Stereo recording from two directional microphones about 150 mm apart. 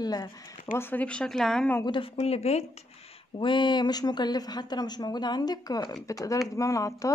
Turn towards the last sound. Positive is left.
turn(degrees=20)  # may be behind; listen again after turning